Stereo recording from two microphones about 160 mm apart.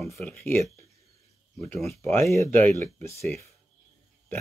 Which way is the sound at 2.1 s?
20° left (ahead or behind).